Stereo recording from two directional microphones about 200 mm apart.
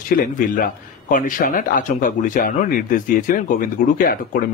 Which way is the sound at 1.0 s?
40° left (ahead or behind).